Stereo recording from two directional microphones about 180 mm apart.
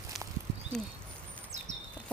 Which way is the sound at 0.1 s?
Centre (ahead or behind).